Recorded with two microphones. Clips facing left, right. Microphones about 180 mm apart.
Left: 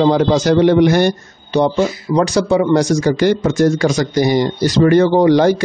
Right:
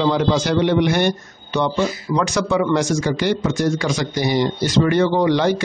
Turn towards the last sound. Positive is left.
turn(degrees=45)  # may be behind; listen again after turning